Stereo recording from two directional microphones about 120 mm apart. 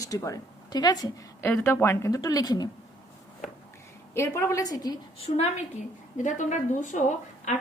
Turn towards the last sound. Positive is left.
turn(degrees=80)